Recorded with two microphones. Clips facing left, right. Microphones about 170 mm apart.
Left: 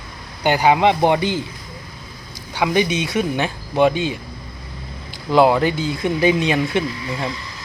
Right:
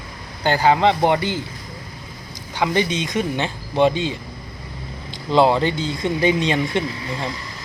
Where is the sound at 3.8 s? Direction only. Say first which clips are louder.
Left 1 dB; 25° right (ahead or behind).